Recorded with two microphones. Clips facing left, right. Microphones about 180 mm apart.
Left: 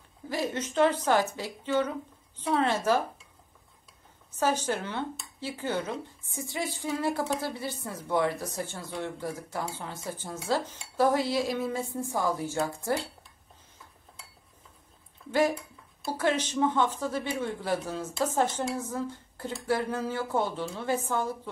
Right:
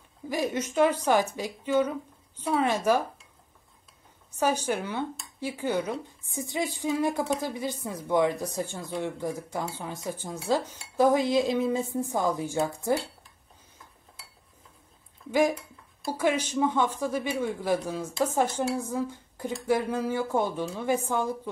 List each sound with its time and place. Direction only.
0.3 s speech: 15° right (ahead or behind)
4.4 s speech: 15° right (ahead or behind)
16.1 s speech: 10° right (ahead or behind)